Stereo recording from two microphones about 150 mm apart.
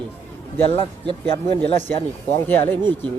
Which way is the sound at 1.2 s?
10° left (ahead or behind).